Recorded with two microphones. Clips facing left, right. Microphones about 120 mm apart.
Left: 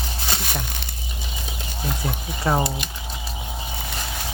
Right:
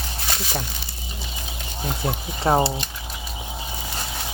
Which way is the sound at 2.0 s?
30° right (ahead or behind).